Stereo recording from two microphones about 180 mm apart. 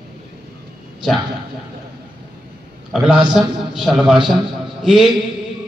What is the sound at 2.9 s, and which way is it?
A man's voice, 5° right (ahead or behind).